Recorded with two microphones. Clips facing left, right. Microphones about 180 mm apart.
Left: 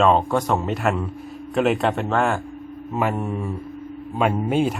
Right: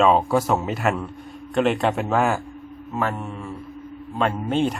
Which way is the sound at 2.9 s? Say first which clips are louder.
Left 3 dB; 15° left (ahead or behind).